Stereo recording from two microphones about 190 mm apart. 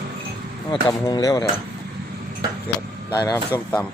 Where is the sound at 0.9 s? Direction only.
20° left (ahead or behind).